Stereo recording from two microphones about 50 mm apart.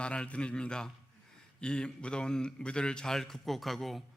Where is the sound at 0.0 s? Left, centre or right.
Left; by 4.0 s centre.